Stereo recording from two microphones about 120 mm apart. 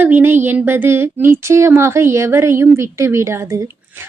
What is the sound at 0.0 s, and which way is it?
A woman's voice, 15° right (ahead or behind).